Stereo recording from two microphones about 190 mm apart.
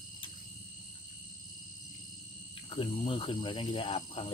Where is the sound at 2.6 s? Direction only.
25° left (ahead or behind).